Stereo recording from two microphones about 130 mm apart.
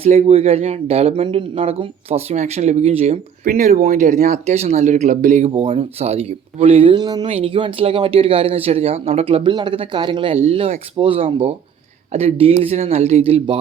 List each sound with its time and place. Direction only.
0.0 s speech: 55° right (ahead or behind)
3.4 s speech: 90° right; by 5.5 s 75° right (ahead or behind)
5.5 s speech: 45° right (ahead or behind)
7.3 s speech: 45° right (ahead or behind)
10.3 s speech: 50° right (ahead or behind)